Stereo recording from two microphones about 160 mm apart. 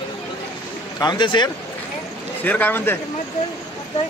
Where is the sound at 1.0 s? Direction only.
30° left (ahead or behind).